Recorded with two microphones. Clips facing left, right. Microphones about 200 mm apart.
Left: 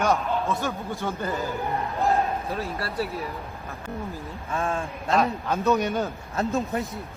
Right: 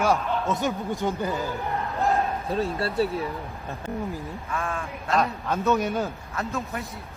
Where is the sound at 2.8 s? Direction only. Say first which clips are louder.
Right 4 dB; 25° right (ahead or behind).